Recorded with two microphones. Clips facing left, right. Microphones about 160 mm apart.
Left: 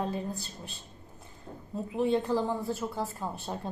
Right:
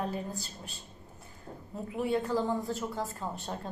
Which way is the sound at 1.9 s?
25° left (ahead or behind).